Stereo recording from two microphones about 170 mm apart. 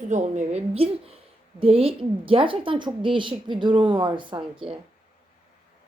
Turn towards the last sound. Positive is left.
turn(degrees=-30)  # may be behind; listen again after turning